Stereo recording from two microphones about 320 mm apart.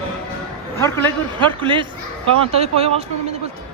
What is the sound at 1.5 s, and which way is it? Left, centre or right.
Speech, centre.